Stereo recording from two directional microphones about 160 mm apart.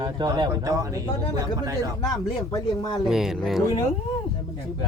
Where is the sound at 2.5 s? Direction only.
30° left (ahead or behind).